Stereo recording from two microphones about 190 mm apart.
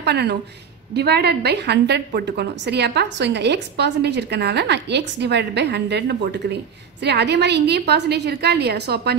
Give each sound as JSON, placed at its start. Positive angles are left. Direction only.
{"t": 0.0, "sound": "a woman's voice", "side_deg": -60}